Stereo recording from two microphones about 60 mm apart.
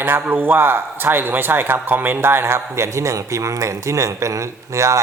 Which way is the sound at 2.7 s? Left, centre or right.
Right.